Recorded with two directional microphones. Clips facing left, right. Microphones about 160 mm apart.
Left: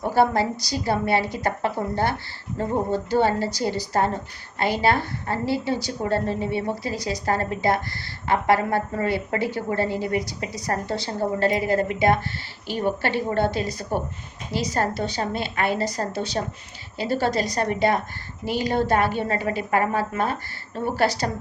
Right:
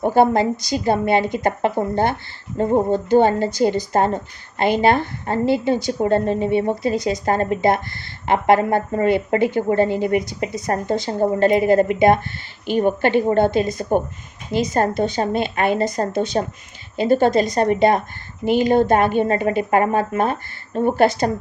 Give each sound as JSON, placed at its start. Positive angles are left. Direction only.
{"t": 0.0, "sound": "a woman's voice", "side_deg": -20}
{"t": 16.4, "sound": "speech", "side_deg": -35}
{"t": 17.0, "sound": "a woman's voice", "side_deg": -20}